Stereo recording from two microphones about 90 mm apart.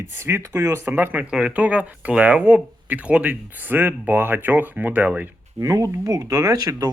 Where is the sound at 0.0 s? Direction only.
30° right (ahead or behind).